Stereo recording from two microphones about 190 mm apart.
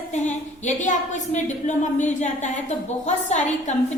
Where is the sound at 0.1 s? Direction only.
40° left (ahead or behind).